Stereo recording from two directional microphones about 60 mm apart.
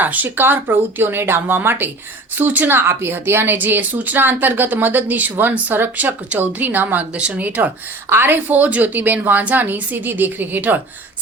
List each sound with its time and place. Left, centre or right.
0.0 s a woman's voice: right
2.7 s a woman's voice: right
8.1 s a woman's voice: right